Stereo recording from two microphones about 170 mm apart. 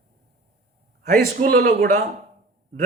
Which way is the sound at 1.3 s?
60° right (ahead or behind).